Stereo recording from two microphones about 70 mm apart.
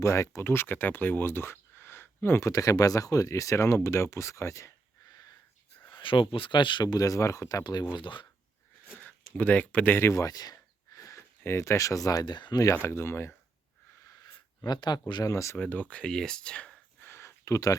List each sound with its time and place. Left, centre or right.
0.0 s speech: left
2.4 s speech: left
5.0 s wheeze: left
6.7 s speech: left
9.0 s speech: left
10.2 s a sound: left
12.7 s speech: left
14.7 s speech: left
15.2 s speech: left
15.5 s speech: left
17.0 s a sound: left